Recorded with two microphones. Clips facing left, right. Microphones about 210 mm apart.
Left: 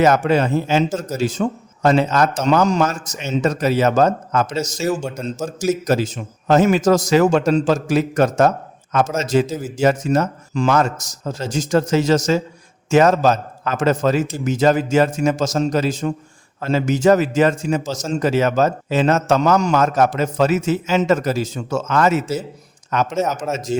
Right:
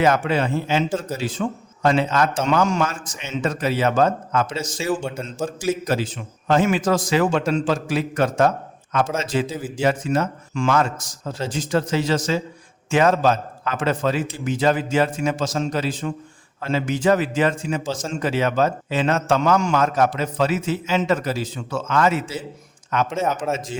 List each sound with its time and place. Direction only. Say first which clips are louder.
0.0 s a man's voice: left 4 dB; 40° left (ahead or behind)